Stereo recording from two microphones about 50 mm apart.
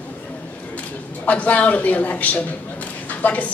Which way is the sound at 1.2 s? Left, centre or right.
Left.